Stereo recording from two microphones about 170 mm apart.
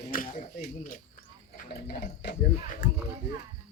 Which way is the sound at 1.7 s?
75° left (ahead or behind).